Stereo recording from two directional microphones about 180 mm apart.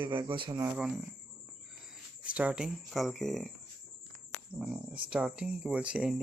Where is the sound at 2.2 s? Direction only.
5° right (ahead or behind).